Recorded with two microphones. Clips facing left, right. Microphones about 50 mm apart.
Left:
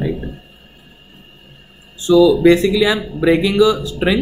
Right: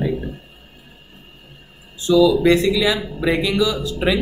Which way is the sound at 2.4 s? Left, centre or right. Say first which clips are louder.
Left 4 dB; left.